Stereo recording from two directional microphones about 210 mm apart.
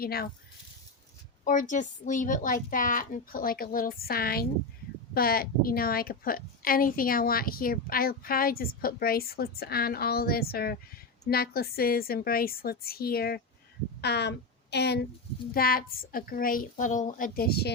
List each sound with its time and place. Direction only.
0.0 s a woman's voice: 45° left (ahead or behind)
1.5 s a woman's voice: 35° left (ahead or behind)